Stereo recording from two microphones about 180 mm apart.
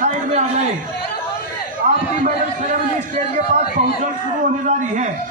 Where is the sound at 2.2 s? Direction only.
45° right (ahead or behind).